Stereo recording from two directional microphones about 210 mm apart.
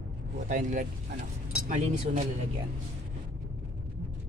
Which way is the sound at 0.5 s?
40° right (ahead or behind).